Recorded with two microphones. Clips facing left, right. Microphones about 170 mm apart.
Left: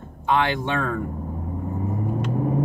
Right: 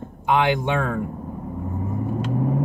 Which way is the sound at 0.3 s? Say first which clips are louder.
Right 2 dB; 15° right (ahead or behind).